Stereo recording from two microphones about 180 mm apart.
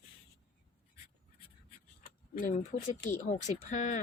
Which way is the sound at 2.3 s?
45° left (ahead or behind).